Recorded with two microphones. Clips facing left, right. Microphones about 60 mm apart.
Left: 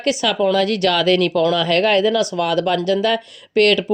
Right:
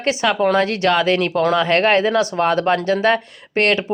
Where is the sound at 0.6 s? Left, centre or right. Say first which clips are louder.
Even; right.